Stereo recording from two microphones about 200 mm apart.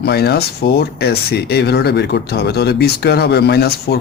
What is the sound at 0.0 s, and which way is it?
Speech, 55° left (ahead or behind).